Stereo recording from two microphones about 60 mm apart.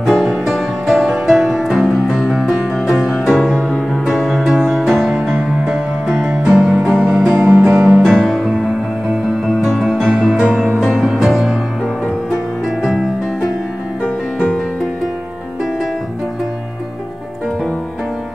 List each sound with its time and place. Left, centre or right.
0.0 s music: centre
5.6 s music: centre
10.1 s music: centre
12.8 s music: centre
14.0 s music: left